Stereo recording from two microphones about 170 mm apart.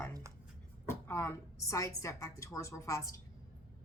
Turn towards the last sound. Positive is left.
turn(degrees=20)  # may be behind; listen again after turning